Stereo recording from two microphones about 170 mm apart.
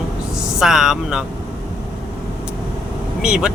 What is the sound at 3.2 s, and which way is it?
Speech, 5° right (ahead or behind).